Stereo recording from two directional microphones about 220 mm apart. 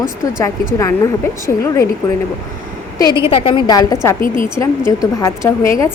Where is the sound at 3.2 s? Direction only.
25° left (ahead or behind).